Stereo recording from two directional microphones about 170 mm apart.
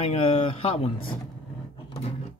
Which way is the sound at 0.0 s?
35° left (ahead or behind).